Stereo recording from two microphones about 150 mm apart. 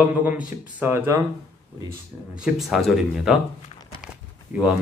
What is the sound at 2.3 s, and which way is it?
Speech, 5° right (ahead or behind).